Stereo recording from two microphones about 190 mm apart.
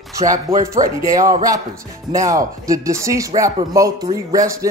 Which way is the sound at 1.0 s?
15° right (ahead or behind).